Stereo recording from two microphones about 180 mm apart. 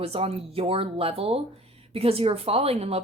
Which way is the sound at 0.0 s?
35° right (ahead or behind).